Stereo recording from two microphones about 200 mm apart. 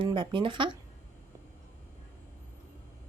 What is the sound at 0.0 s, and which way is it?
Speech, 25° right (ahead or behind).